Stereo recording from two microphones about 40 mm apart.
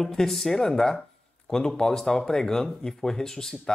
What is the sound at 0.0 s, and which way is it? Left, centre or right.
Speech, centre.